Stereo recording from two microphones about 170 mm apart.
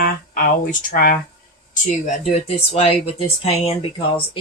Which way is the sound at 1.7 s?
45° left (ahead or behind).